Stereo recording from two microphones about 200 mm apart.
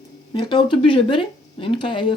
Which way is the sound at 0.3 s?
20° left (ahead or behind).